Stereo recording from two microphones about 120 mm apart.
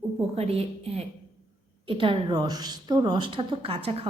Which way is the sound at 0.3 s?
60° right (ahead or behind).